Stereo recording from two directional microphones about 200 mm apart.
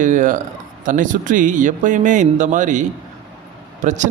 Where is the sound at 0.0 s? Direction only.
40° right (ahead or behind).